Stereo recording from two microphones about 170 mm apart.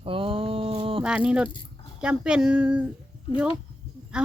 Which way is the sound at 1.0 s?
5° right (ahead or behind).